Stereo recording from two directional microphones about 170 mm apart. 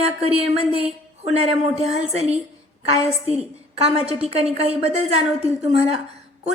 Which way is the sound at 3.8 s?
35° right (ahead or behind).